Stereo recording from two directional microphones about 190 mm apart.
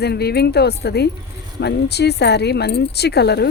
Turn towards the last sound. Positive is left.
turn(degrees=60)  # may be behind; listen again after turning